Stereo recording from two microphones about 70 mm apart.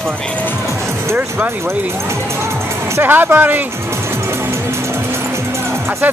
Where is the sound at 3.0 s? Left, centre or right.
Right.